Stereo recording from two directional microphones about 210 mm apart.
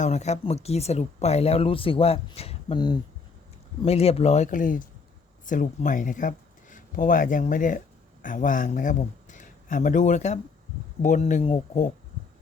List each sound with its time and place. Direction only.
0.0 s speech: 35° left (ahead or behind)